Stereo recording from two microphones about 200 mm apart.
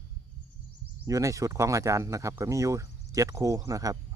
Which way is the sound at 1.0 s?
15° right (ahead or behind).